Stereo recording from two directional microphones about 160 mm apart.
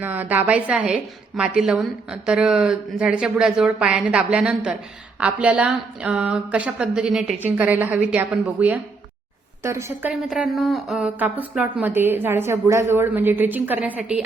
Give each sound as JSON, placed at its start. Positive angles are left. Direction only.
{"t": 0.0, "sound": "a woman's voice", "side_deg": -10}
{"t": 10.1, "sound": "speech", "side_deg": -5}